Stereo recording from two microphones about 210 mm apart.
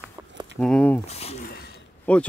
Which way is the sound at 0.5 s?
5° left (ahead or behind).